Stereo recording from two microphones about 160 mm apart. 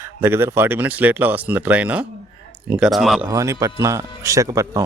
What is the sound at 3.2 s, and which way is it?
Speech, 20° right (ahead or behind).